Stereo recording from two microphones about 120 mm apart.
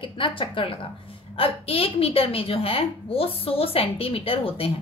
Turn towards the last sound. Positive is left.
turn(degrees=50)  # may be behind; listen again after turning